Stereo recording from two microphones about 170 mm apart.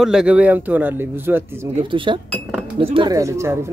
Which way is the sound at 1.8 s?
30° right (ahead or behind).